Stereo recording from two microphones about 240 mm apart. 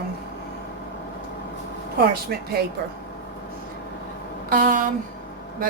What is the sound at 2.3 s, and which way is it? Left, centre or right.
Speech, right.